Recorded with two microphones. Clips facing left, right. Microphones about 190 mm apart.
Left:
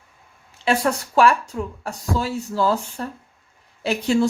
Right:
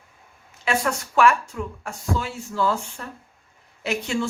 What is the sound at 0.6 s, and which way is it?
Speech, 30° left (ahead or behind).